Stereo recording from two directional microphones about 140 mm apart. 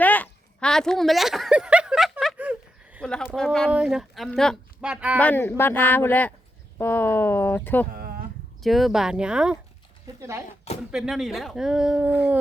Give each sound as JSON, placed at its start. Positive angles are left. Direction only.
{"t": 0.0, "sound": "a sound", "side_deg": 10}
{"t": 2.4, "sound": "a sound", "side_deg": -10}
{"t": 3.0, "sound": "a sound", "side_deg": 5}
{"t": 3.7, "sound": "speech", "side_deg": -5}
{"t": 4.8, "sound": "speech", "side_deg": -5}
{"t": 5.2, "sound": "speech", "side_deg": 15}
{"t": 8.6, "sound": "speech", "side_deg": 0}
{"t": 10.2, "sound": "speech", "side_deg": -20}
{"t": 10.9, "sound": "speech", "side_deg": -5}